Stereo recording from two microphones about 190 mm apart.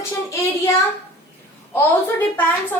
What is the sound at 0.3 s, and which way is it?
Child singing, 15° left (ahead or behind).